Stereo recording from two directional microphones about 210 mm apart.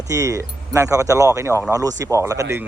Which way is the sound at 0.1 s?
15° right (ahead or behind).